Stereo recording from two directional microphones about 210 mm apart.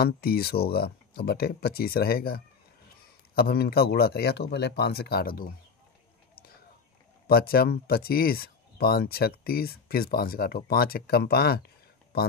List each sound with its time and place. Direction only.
0.0 s speech: 45° left (ahead or behind)
7.2 s speech: 45° left (ahead or behind)